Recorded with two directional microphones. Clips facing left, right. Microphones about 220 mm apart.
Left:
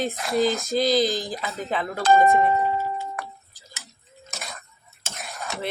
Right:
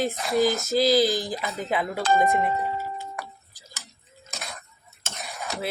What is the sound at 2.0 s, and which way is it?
Speech, 40° left (ahead or behind).